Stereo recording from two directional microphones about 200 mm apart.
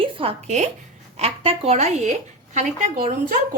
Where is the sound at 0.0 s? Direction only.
25° right (ahead or behind).